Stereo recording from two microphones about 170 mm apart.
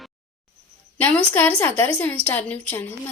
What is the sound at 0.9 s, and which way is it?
A woman's voice, 10° left (ahead or behind).